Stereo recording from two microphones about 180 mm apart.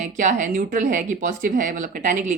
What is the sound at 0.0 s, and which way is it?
Speech, 45° right (ahead or behind).